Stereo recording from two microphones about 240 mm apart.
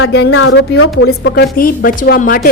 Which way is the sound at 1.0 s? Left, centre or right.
Left.